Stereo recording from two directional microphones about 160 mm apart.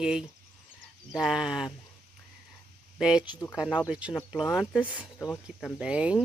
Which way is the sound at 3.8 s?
5° right (ahead or behind).